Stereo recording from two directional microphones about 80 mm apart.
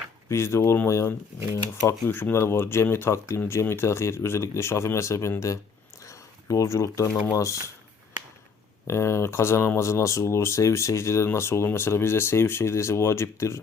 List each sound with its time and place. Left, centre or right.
0.3 s speech: left
6.1 s a sound: left
7.3 s speech: left
8.9 s speech: left